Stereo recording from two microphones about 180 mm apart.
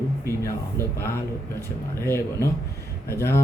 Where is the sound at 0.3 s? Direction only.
15° left (ahead or behind).